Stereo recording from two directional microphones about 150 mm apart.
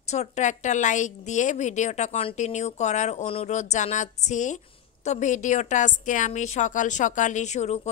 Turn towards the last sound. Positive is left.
turn(degrees=50)  # may be behind; listen again after turning